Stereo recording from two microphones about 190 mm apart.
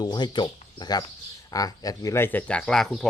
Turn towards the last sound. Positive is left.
turn(degrees=0)  # may be behind; listen again after turning